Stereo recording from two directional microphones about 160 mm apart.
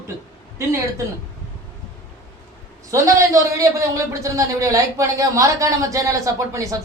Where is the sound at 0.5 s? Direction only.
20° right (ahead or behind).